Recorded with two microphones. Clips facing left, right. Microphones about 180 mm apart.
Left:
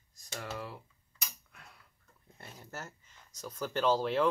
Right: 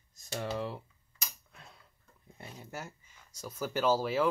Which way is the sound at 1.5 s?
25° right (ahead or behind).